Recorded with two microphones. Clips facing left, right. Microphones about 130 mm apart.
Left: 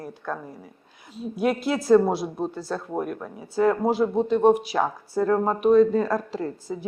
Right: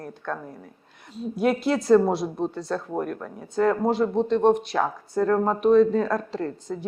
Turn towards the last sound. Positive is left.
turn(degrees=5)  # may be behind; listen again after turning